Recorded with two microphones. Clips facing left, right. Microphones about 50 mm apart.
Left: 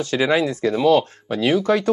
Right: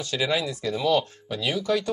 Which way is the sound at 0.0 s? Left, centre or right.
Left.